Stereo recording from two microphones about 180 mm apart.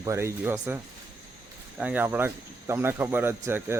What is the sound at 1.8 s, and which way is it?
Speech, 10° right (ahead or behind).